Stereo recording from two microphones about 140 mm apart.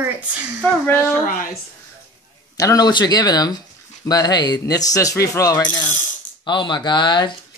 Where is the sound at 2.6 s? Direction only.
25° left (ahead or behind).